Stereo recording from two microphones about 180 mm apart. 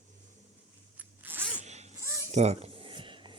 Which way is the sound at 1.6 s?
40° right (ahead or behind).